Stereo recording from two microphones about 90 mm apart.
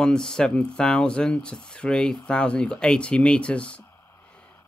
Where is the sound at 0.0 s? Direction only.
5° left (ahead or behind).